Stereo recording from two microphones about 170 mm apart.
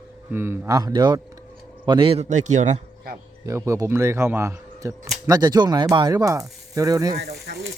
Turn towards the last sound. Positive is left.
turn(degrees=-65)  # may be behind; listen again after turning